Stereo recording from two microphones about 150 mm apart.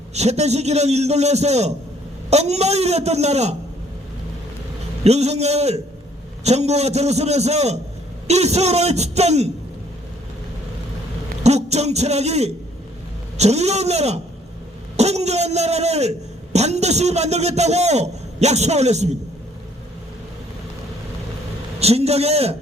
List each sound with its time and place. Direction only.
0.1 s a man's voice: 45° right (ahead or behind)
5.0 s a man's voice: 45° right (ahead or behind)
11.4 s a man's voice: 45° right (ahead or behind)
21.8 s a man's voice: 45° right (ahead or behind)